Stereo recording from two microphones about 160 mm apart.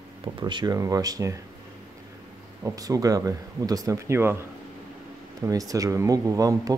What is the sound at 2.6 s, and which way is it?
Speech, 20° right (ahead or behind).